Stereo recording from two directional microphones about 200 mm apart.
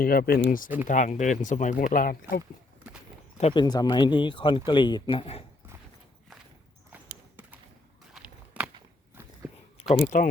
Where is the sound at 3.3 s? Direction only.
30° left (ahead or behind).